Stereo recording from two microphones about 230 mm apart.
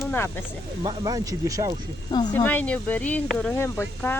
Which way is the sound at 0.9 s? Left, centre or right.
Centre.